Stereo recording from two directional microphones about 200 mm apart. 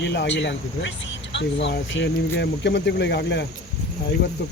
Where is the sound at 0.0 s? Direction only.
60° left (ahead or behind).